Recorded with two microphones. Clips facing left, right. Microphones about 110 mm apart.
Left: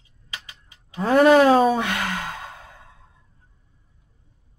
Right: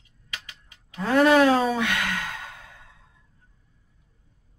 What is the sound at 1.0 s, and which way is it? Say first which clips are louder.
Speech: left 3 dB; 40° left (ahead or behind).